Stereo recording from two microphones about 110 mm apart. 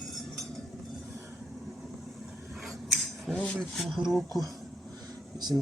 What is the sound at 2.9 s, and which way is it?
Speech, 5° left (ahead or behind).